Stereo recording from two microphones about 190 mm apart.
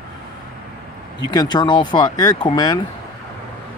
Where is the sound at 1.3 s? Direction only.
20° left (ahead or behind).